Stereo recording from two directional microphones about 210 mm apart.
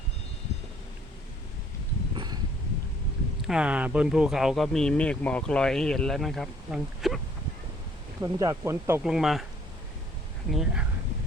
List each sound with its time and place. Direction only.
2.1 s a sound: 20° right (ahead or behind)
3.4 s speech: 5° right (ahead or behind)
8.2 s speech: 15° right (ahead or behind)
10.5 s speech: 5° right (ahead or behind)